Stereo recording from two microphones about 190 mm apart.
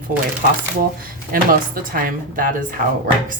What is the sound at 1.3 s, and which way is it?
Speech, 50° right (ahead or behind).